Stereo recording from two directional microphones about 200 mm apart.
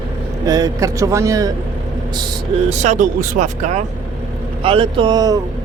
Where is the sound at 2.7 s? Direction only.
35° right (ahead or behind).